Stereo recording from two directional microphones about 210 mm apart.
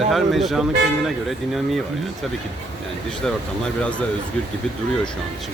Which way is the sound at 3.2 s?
5° left (ahead or behind).